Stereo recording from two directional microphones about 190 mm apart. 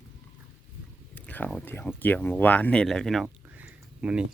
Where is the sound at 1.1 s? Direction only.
10° left (ahead or behind).